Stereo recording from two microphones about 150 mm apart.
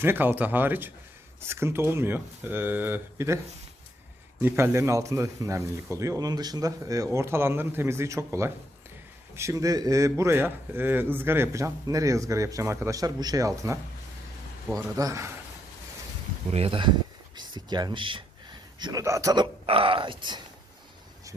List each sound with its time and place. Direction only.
0.0 s speech: 15° right (ahead or behind)
4.4 s a man's voice: 15° right (ahead or behind)
14.8 s a man's voice: 20° right (ahead or behind)
16.5 s a man's voice: 40° right (ahead or behind); by 19.5 s 25° right (ahead or behind)
19.6 s speech: 35° right (ahead or behind)